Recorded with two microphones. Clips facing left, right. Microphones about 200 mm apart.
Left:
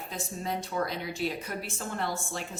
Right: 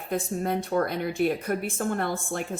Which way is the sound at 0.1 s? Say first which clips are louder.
Right 8 dB; 55° right (ahead or behind).